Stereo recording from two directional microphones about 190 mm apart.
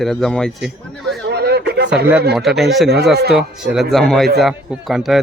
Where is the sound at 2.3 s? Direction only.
Centre (ahead or behind).